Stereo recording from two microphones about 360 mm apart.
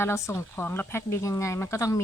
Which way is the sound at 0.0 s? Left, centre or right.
Centre.